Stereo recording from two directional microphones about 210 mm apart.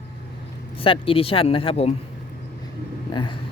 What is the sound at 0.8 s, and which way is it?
Speech, 25° left (ahead or behind).